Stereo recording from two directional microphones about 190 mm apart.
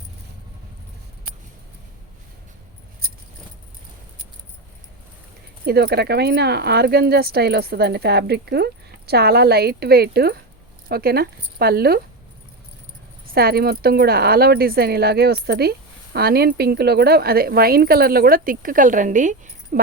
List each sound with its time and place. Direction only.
3.0 s keys jangling: 50° right (ahead or behind)
5.6 s speech: 55° right (ahead or behind)
13.2 s speech: 50° right (ahead or behind)